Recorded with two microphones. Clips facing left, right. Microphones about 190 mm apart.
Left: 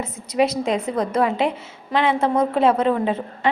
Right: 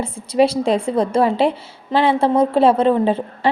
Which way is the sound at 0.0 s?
30° right (ahead or behind).